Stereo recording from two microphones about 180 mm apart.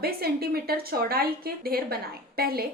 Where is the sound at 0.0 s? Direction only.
60° right (ahead or behind).